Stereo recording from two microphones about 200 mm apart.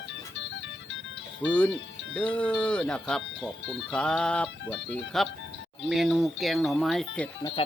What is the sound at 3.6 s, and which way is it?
Speech, 65° left (ahead or behind).